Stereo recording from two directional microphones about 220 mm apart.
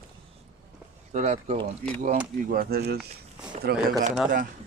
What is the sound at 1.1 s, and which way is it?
Speech, 35° right (ahead or behind).